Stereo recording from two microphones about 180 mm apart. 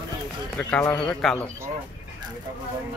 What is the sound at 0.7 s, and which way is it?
Speech, 10° left (ahead or behind).